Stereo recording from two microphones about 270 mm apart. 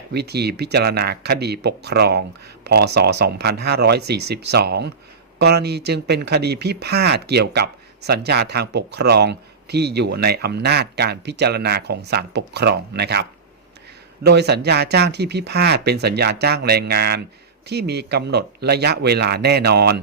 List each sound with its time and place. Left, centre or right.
0.1 s speech: right
14.3 s speech: right